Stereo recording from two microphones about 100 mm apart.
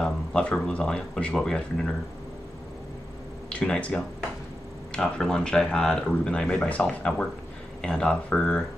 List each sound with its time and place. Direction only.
0.0 s speech: 10° left (ahead or behind)
3.4 s speech: 10° left (ahead or behind)